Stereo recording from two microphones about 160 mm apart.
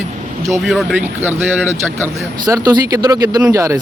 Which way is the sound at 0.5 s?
Centre (ahead or behind).